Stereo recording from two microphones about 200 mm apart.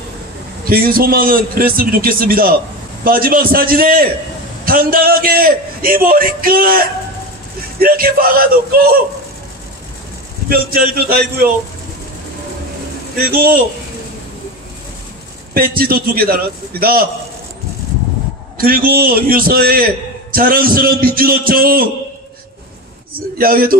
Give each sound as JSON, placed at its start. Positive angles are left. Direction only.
{"t": 0.7, "sound": "a man's voice", "side_deg": -50}
{"t": 10.5, "sound": "a man's voice", "side_deg": -50}
{"t": 13.2, "sound": "a man's voice", "side_deg": -50}
{"t": 15.5, "sound": "a man's voice", "side_deg": -45}
{"t": 18.6, "sound": "a man's voice", "side_deg": -45}
{"t": 23.1, "sound": "a man's voice", "side_deg": -45}